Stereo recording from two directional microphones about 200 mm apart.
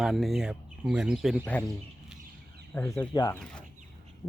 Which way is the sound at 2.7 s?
5° left (ahead or behind).